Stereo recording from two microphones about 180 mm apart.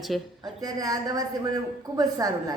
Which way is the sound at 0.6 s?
20° right (ahead or behind).